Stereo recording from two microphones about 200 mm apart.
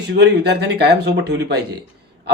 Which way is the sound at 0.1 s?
55° right (ahead or behind).